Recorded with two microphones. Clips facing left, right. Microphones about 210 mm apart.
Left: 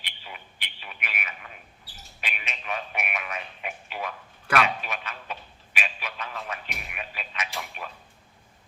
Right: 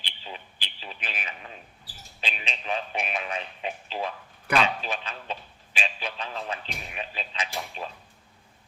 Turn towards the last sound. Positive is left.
turn(degrees=-30)  # may be behind; listen again after turning